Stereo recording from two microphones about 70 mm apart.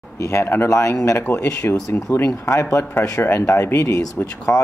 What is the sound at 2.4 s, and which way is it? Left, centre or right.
Speech, left.